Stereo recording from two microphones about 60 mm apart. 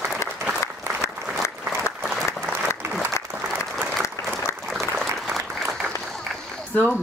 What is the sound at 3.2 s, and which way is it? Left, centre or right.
Applause, left.